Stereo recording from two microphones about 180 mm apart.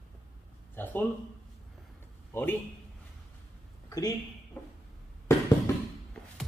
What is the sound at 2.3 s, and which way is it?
Speech, 10° left (ahead or behind).